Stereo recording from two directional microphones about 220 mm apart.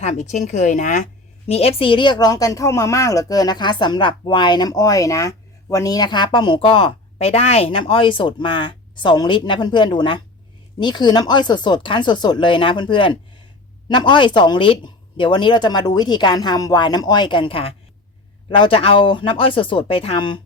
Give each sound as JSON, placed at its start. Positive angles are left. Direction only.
{"t": 0.0, "sound": "a woman's voice", "side_deg": 30}